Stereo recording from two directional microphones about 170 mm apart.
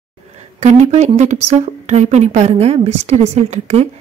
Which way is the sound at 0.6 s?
45° right (ahead or behind).